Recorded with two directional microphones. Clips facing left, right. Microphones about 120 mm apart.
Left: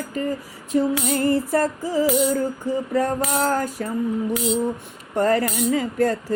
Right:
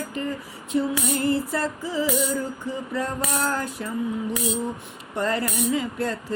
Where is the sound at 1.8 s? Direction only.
45° left (ahead or behind).